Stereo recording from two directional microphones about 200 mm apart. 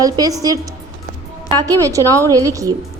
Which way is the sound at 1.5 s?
20° right (ahead or behind).